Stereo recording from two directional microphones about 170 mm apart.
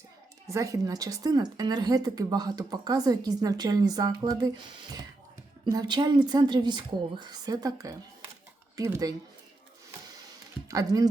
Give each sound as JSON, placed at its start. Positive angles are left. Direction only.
{"t": 0.4, "sound": "a woman's voice", "side_deg": -20}
{"t": 10.7, "sound": "a woman's voice", "side_deg": -20}